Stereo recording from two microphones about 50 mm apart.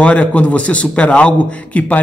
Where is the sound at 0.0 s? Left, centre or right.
Left.